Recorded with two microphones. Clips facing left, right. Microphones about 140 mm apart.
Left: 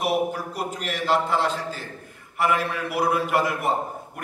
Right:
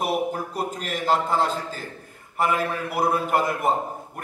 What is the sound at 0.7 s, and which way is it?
A man's voice, 45° right (ahead or behind).